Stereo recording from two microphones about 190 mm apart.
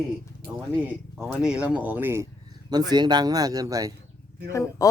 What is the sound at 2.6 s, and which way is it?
Speech, 20° right (ahead or behind).